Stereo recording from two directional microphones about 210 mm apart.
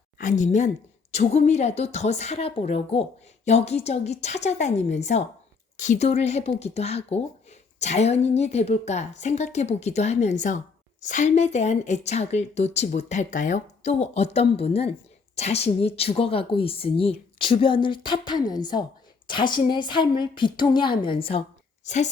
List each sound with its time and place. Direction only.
0.2 s speech: 35° left (ahead or behind)